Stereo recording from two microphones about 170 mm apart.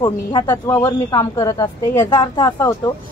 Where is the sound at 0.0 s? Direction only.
25° left (ahead or behind).